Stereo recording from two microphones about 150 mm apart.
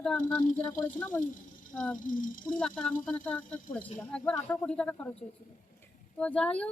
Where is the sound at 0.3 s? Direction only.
30° left (ahead or behind).